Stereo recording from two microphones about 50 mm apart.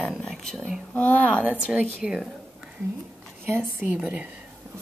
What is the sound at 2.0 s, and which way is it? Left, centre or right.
Speech, centre.